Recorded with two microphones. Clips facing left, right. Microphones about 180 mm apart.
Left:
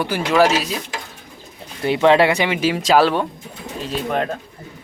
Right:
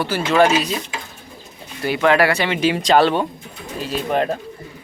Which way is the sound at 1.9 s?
25° left (ahead or behind).